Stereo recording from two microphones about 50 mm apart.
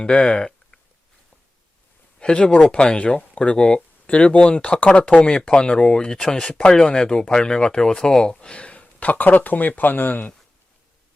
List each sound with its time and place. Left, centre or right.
0.0 s speech: centre
2.1 s speech: centre; by 10.3 s left